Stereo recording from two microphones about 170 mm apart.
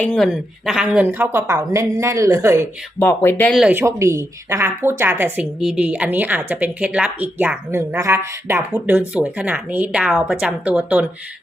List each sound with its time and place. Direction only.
0.0 s speech: 5° left (ahead or behind); by 2.6 s 15° right (ahead or behind)
3.0 s speech: 15° left (ahead or behind)
3.5 s speech: 5° right (ahead or behind)